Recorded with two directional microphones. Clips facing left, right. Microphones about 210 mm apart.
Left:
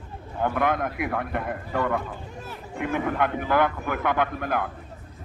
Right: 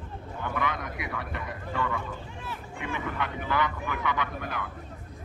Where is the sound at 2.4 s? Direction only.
40° left (ahead or behind).